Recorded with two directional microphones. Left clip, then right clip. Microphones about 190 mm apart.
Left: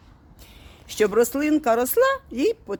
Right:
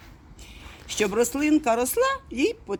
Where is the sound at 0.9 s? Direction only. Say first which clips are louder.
Left 4 dB; 45° left (ahead or behind).